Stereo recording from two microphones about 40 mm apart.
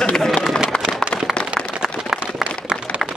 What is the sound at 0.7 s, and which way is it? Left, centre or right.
Run, left.